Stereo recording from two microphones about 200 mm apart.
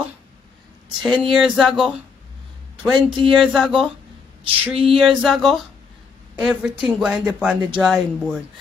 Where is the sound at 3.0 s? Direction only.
25° right (ahead or behind).